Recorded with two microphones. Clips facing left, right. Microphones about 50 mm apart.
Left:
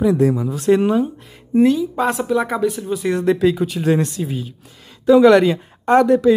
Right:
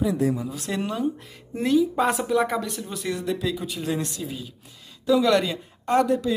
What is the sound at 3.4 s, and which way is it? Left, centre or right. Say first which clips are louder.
Speech: left 11 dB; left.